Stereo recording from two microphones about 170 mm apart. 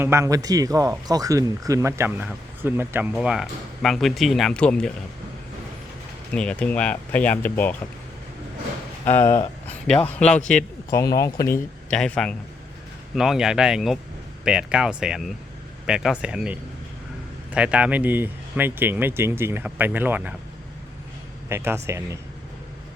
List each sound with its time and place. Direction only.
0.0 s speech: 15° right (ahead or behind); by 4.9 s 5° left (ahead or behind)
6.3 s speech: 5° left (ahead or behind)
9.0 s speech: 15° left (ahead or behind)
10.9 s speech: 20° left (ahead or behind)
11.9 s speech: 5° left (ahead or behind)
21.5 s speech: 15° right (ahead or behind)